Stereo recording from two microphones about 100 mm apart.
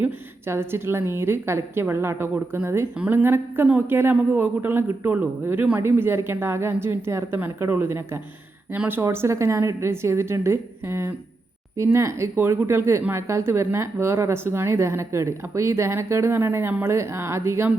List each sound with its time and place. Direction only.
0.0 s a woman's voice: 25° right (ahead or behind)